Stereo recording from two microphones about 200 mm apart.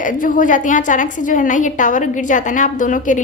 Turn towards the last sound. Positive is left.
turn(degrees=40)  # may be behind; listen again after turning